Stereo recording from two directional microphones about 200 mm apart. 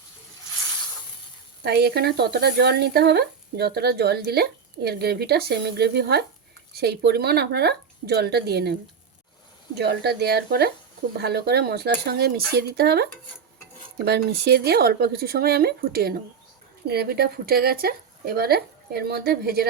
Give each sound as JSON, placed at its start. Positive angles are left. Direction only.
{"t": 1.6, "sound": "speech", "side_deg": -55}
{"t": 9.7, "sound": "speech", "side_deg": -55}